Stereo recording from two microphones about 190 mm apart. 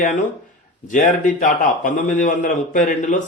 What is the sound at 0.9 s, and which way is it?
A man's voice, 40° left (ahead or behind).